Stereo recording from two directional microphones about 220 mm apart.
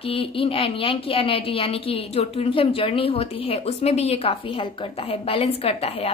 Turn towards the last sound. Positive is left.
turn(degrees=25)  # may be behind; listen again after turning